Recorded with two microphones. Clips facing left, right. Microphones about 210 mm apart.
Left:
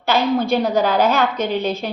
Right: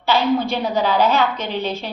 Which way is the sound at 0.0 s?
45° left (ahead or behind).